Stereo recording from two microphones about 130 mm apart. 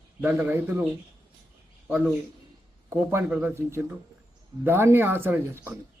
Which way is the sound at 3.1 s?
20° right (ahead or behind).